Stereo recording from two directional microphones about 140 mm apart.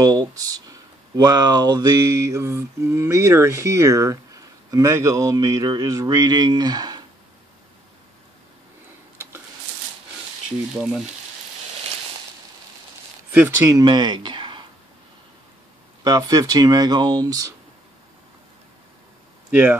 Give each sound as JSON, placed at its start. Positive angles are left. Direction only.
{"t": 0.0, "sound": "speech", "side_deg": -30}
{"t": 10.8, "sound": "frying", "side_deg": -5}
{"t": 13.3, "sound": "speech", "side_deg": -15}
{"t": 16.0, "sound": "speech", "side_deg": -25}
{"t": 19.5, "sound": "speech", "side_deg": -15}